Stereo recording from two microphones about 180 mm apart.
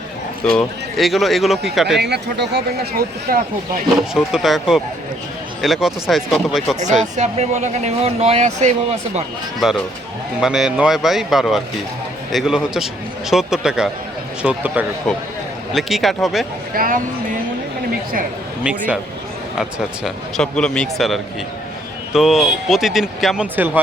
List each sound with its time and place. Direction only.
0.4 s speech: centre (ahead or behind)
2.0 s speech: 65° right (ahead or behind)
4.1 s speech: centre (ahead or behind)
7.2 s speech: 40° right (ahead or behind)
9.6 s speech: centre (ahead or behind)
16.7 s speech: 50° right (ahead or behind)
20.1 s speech: centre (ahead or behind)